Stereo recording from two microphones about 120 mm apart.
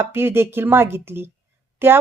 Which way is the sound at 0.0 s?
20° right (ahead or behind).